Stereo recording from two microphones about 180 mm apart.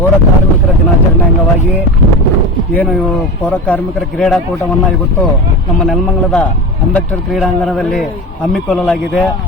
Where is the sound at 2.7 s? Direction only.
5° left (ahead or behind).